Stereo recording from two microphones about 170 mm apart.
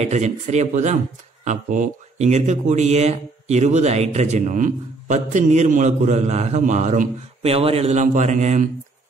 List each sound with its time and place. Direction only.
0.0 s speech: 40° right (ahead or behind)